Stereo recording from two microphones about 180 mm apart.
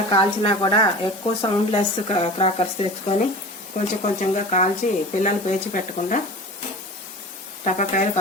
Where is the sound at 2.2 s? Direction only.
35° left (ahead or behind).